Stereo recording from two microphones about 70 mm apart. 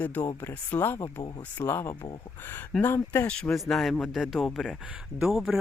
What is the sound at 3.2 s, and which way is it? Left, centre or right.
Speech, centre.